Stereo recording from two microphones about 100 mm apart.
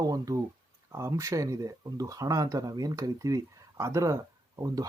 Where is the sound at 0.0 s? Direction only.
35° right (ahead or behind).